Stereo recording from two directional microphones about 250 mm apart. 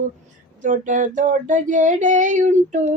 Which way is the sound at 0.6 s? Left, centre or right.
Right.